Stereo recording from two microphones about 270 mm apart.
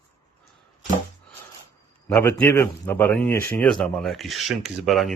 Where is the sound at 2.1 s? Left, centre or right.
Centre.